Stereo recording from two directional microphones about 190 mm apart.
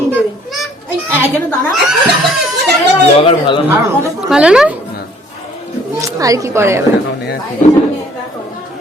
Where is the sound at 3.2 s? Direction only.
25° left (ahead or behind).